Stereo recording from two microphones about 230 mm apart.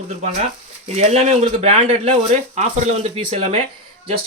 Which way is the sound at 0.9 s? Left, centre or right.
Right.